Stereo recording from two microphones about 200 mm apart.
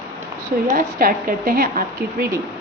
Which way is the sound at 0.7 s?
45° right (ahead or behind).